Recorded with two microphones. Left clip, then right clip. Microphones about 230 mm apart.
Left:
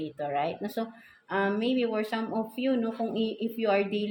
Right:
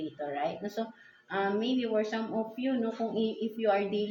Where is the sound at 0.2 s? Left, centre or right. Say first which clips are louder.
Left 4 dB; left.